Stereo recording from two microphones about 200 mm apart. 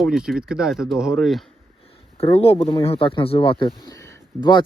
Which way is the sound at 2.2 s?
30° left (ahead or behind).